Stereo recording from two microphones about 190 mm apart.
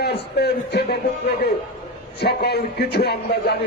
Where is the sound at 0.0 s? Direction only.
60° left (ahead or behind).